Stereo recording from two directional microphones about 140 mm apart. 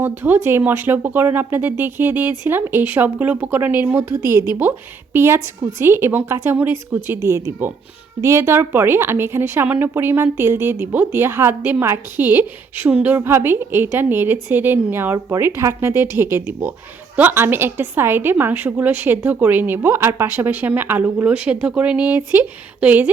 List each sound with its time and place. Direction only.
0.0 s a woman's voice: 15° right (ahead or behind)